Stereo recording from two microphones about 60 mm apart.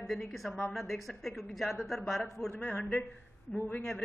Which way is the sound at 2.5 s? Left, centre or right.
Left.